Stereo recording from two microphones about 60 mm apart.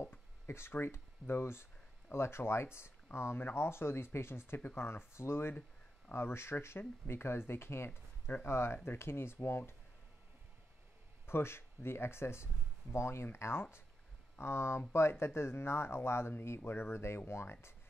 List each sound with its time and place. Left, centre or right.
0.5 s speech: left
11.2 s speech: left